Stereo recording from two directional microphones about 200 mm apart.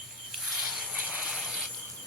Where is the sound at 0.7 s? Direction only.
Centre (ahead or behind).